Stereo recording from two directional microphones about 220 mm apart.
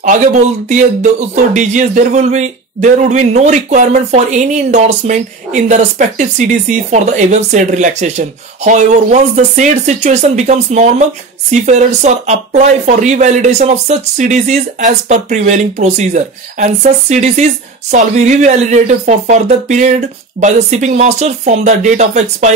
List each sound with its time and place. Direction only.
0.7 s speech: 35° right (ahead or behind)